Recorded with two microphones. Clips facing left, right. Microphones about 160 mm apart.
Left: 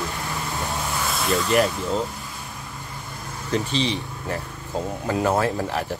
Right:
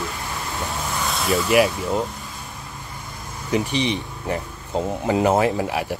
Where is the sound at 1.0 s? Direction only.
Centre (ahead or behind).